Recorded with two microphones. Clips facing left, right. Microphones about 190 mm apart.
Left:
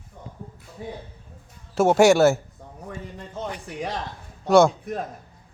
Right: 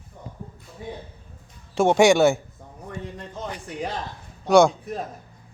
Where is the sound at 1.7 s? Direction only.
5° left (ahead or behind).